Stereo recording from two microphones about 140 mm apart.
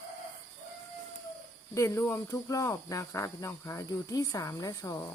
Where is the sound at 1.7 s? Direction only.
20° left (ahead or behind).